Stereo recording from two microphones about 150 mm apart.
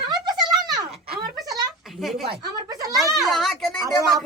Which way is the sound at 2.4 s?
25° right (ahead or behind).